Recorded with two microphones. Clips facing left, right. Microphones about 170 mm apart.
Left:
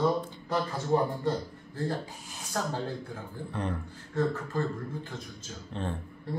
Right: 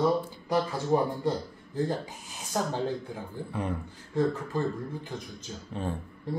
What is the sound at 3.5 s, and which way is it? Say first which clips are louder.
Speech: right 1 dB; 5° right (ahead or behind).